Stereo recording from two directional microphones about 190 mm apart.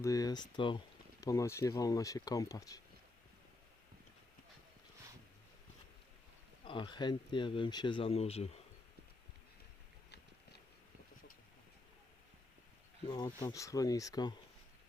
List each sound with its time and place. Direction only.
0.0 s speech: 20° left (ahead or behind)
6.7 s speech: 25° left (ahead or behind)
13.1 s speech: 20° left (ahead or behind)